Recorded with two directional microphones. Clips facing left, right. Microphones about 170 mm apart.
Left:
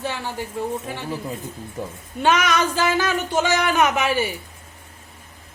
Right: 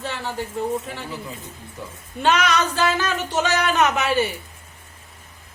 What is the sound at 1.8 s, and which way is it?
Speech, 50° left (ahead or behind).